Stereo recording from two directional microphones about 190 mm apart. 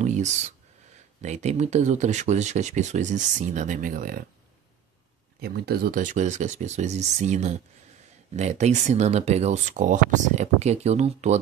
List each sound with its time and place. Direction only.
0.0 s a sound: 40° right (ahead or behind)
1.2 s speech: 35° right (ahead or behind)
5.4 s speech: 50° right (ahead or behind); by 11.3 s 35° right (ahead or behind)